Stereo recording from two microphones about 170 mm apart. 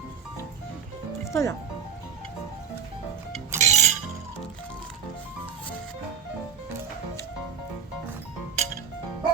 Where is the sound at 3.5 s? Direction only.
45° right (ahead or behind).